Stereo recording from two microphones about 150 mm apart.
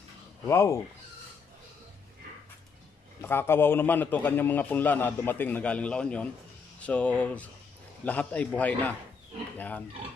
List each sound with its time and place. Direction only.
0.5 s a man's voice: 20° left (ahead or behind)
3.2 s a man's voice: 15° left (ahead or behind)